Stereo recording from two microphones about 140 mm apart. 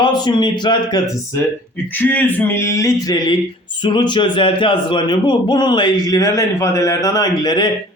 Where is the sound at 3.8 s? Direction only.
35° left (ahead or behind).